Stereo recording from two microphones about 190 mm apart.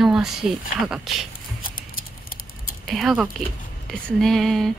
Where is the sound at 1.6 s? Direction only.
45° left (ahead or behind).